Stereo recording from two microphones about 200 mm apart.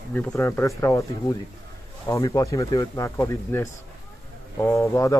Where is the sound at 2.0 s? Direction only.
15° left (ahead or behind).